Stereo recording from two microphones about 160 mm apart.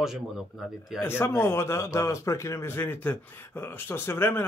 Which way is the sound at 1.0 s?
15° left (ahead or behind).